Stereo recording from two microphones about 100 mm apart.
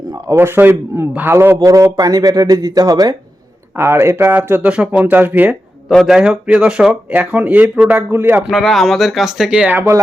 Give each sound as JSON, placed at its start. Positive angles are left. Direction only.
{"t": 0.3, "sound": "a man's voice", "side_deg": -25}
{"t": 1.5, "sound": "a man's voice", "side_deg": -35}
{"t": 3.8, "sound": "a man's voice", "side_deg": -25}
{"t": 5.9, "sound": "speech", "side_deg": 0}
{"t": 8.4, "sound": "speech", "side_deg": 0}
{"t": 9.7, "sound": "a man's voice", "side_deg": -30}